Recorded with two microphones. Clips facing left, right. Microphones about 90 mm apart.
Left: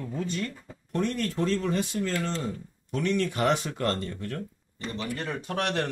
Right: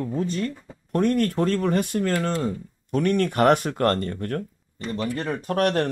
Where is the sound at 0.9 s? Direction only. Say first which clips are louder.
Right 7 dB; 50° right (ahead or behind).